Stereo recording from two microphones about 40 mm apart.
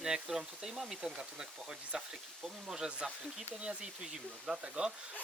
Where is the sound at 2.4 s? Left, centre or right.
Centre.